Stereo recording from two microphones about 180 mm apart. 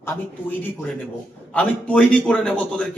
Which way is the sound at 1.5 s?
5° left (ahead or behind).